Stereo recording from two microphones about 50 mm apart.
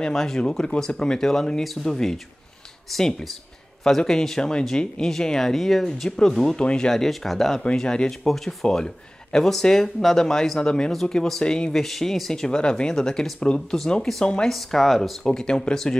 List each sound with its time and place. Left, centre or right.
0.0 s speech: centre
6.6 s speech: left
6.9 s speech: centre
14.5 s speech: centre